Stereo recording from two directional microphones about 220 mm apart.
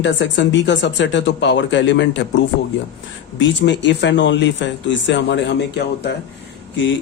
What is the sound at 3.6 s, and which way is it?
Speech, 50° left (ahead or behind).